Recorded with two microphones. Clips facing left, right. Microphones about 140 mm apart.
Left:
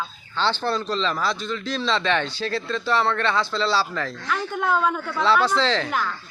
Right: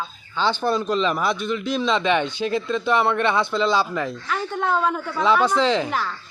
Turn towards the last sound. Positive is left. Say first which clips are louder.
# even
turn(degrees=0)  # may be behind; listen again after turning